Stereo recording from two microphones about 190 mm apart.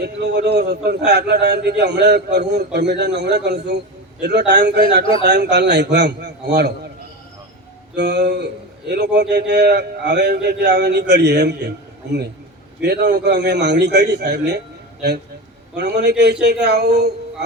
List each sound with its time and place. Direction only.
0.0 s a man's voice: 60° right (ahead or behind)
7.9 s a man's voice: 65° right (ahead or behind)
12.8 s a man's voice: 60° right (ahead or behind)
15.7 s a man's voice: 60° right (ahead or behind)